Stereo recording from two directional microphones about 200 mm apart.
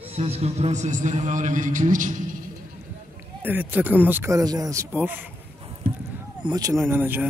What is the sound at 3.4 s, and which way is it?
Speech, 10° right (ahead or behind).